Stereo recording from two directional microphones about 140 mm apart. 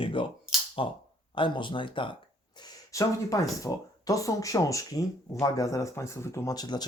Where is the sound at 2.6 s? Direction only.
25° left (ahead or behind).